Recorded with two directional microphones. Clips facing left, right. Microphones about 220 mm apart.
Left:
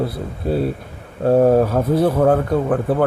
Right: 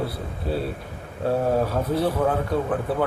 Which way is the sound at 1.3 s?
50° left (ahead or behind).